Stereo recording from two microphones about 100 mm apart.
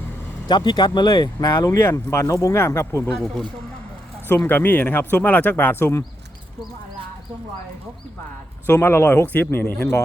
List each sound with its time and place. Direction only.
0.4 s speech: 45° left (ahead or behind); by 3.0 s 25° left (ahead or behind)
3.1 s speech: 5° left (ahead or behind)
4.4 s speech: 20° left (ahead or behind)
8.6 s speech: 20° left (ahead or behind)